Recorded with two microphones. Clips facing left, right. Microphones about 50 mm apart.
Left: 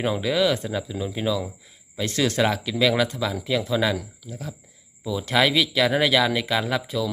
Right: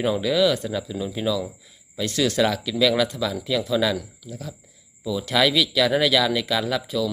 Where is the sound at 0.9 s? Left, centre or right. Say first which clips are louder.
Even; centre.